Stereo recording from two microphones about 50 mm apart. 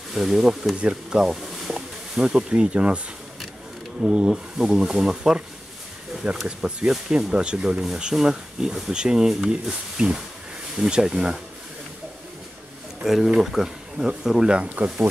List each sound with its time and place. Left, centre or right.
0.1 s speech: centre
4.0 s speech: centre
6.4 s speech: centre
13.0 s speech: centre